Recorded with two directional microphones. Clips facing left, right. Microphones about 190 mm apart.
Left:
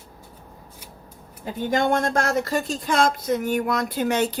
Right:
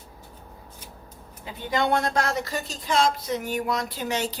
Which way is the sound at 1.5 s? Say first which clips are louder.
Left 3 dB; 45° left (ahead or behind).